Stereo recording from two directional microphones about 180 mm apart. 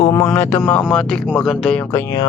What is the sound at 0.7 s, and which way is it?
Speech, 10° left (ahead or behind).